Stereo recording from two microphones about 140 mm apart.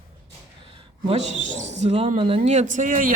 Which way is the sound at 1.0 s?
50° right (ahead or behind).